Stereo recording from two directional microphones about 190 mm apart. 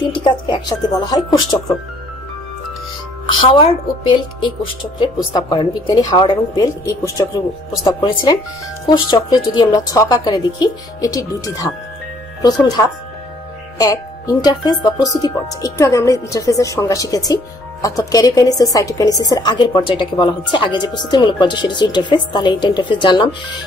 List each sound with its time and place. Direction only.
0.1 s speech: 25° left (ahead or behind)
3.3 s a woman's voice: 25° left (ahead or behind)